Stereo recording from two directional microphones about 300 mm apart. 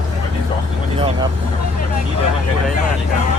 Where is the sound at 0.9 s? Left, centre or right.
Centre.